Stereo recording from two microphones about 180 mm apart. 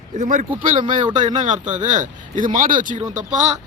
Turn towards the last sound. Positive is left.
turn(degrees=-40)  # may be behind; listen again after turning